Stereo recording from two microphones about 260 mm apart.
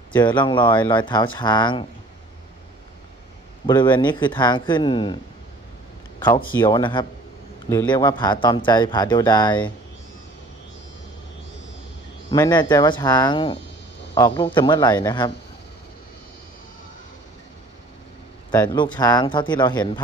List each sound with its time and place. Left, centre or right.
0.1 s speech: centre
3.6 s speech: centre
12.3 s speech: centre
18.5 s speech: centre